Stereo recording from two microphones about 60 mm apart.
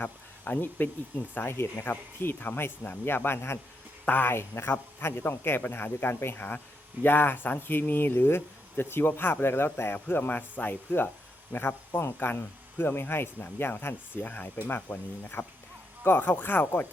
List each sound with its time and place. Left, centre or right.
0.0 s speech: left
4.0 s speech: left